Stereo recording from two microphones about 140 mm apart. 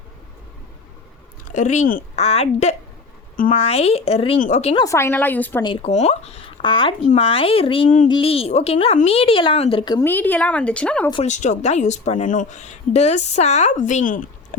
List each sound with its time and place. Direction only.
1.5 s a woman's voice: 60° left (ahead or behind)
2.1 s speech: 50° left (ahead or behind)
3.3 s speech: 80° left
3.6 s speech: 45° left (ahead or behind)
4.4 s a woman's voice: 60° left (ahead or behind)
4.9 s a woman's voice: 20° left (ahead or behind)
5.6 s speech: 40° left (ahead or behind)
5.9 s speech: 50° left (ahead or behind); by 10.0 s 35° left (ahead or behind)
10.0 s a woman's voice: 15° left (ahead or behind)
11.3 s a woman's voice: 60° left (ahead or behind)